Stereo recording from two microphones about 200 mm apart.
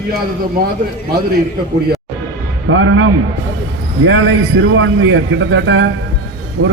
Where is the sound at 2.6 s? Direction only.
70° right (ahead or behind).